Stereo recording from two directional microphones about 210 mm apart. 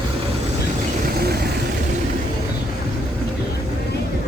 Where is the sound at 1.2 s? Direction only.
50° right (ahead or behind).